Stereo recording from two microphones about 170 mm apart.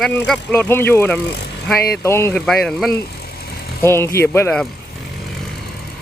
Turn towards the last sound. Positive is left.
turn(degrees=10)  # may be behind; listen again after turning